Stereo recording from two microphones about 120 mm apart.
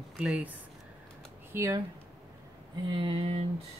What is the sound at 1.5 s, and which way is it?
Speech, 25° right (ahead or behind).